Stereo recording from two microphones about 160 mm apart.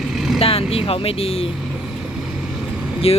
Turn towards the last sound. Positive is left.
turn(degrees=40)  # may be behind; listen again after turning